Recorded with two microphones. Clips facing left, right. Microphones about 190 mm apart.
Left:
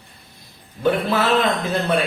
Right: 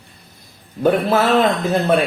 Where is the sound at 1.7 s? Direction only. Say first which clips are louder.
Right 4 dB; 50° right (ahead or behind).